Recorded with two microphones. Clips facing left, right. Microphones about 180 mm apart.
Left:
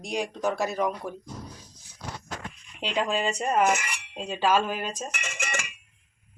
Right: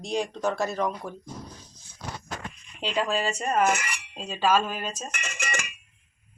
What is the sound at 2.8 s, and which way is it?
Speech, 15° left (ahead or behind).